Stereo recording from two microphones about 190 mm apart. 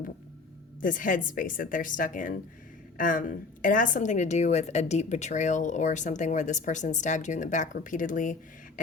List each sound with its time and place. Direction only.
0.8 s a woman's voice: 45° left (ahead or behind)